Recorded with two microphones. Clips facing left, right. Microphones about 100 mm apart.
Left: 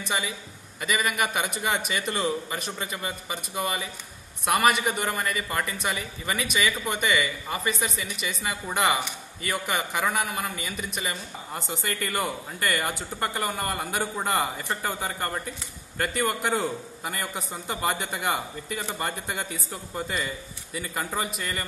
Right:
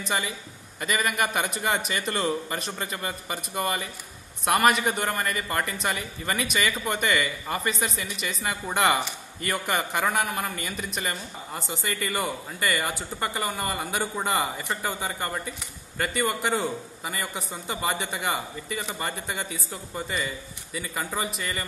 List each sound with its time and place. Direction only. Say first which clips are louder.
0.7 s a man's voice: even; 5° left (ahead or behind)